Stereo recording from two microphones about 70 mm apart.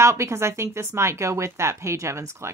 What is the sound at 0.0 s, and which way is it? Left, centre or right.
Speech, right.